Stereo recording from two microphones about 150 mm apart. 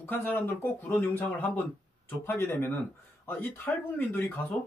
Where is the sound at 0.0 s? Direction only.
15° left (ahead or behind).